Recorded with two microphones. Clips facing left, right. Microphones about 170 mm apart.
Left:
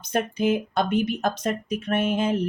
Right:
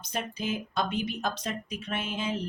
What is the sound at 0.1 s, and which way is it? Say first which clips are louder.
Speech: left 10 dB; 55° left (ahead or behind).